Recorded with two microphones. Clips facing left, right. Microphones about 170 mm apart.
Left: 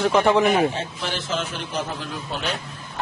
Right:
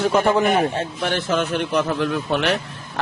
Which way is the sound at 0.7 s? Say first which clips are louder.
Right 5 dB; 60° right (ahead or behind).